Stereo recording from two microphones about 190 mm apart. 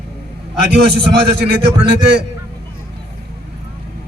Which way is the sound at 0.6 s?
60° right (ahead or behind).